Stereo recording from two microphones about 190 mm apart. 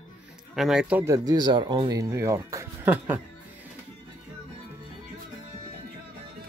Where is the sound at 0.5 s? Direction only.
Centre (ahead or behind).